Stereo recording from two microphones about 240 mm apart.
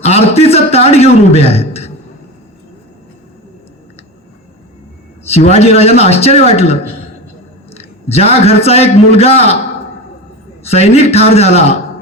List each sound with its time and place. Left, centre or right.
0.0 s a man's voice: left
5.2 s a man's voice: left
10.6 s a man's voice: left